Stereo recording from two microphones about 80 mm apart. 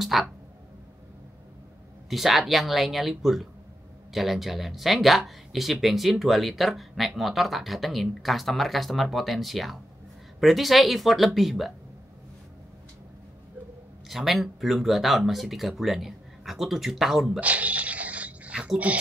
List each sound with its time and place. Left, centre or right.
0.0 s speech: centre
2.0 s speech: centre
14.0 s speech: centre
17.4 s a sound: centre